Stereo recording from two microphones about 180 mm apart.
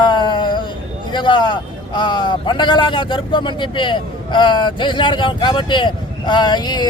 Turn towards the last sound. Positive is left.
turn(degrees=25)  # may be behind; listen again after turning